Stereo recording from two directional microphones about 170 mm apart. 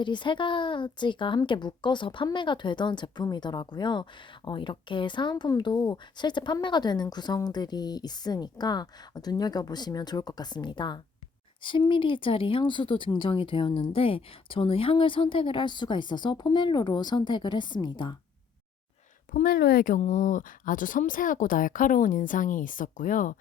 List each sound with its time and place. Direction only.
0.0 s speech: 30° left (ahead or behind)
19.3 s speech: 60° left (ahead or behind)